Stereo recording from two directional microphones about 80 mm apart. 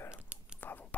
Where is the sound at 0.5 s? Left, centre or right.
Left.